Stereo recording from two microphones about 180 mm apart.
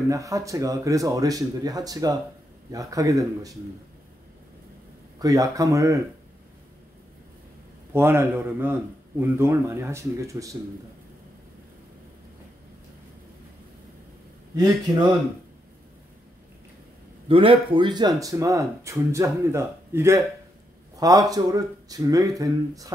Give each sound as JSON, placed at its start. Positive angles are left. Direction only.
{"t": 0.1, "sound": "speech", "side_deg": -20}
{"t": 5.2, "sound": "speech", "side_deg": -20}
{"t": 7.9, "sound": "speech", "side_deg": -15}
{"t": 14.5, "sound": "speech", "side_deg": -25}
{"t": 17.3, "sound": "speech", "side_deg": -30}